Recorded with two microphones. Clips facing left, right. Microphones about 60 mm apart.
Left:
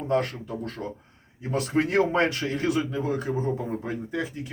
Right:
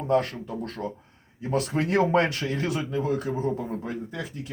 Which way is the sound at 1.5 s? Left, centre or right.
Left.